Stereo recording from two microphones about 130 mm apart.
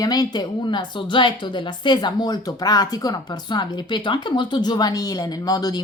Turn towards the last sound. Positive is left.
turn(degrees=30)  # may be behind; listen again after turning